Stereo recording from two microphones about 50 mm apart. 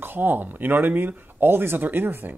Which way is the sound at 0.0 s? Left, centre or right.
Right.